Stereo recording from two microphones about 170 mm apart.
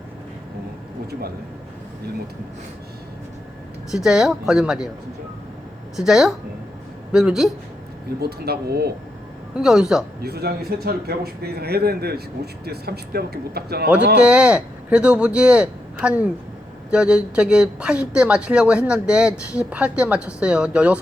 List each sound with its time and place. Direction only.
3.9 s speech: 5° right (ahead or behind)
6.0 s speech: 5° right (ahead or behind)
8.2 s speech: 70° right (ahead or behind)
9.6 s speech: 5° right (ahead or behind)
10.2 s speech: 70° right (ahead or behind)
14.2 s speech: 5° right (ahead or behind)